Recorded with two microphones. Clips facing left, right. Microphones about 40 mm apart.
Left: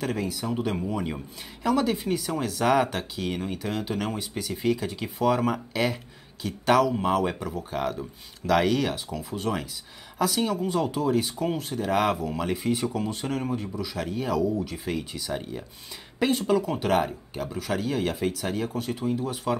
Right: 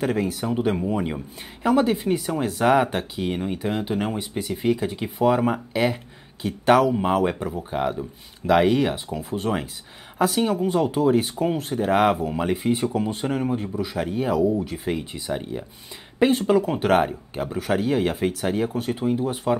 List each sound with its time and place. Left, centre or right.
0.0 s speech: right
0.8 s speech: right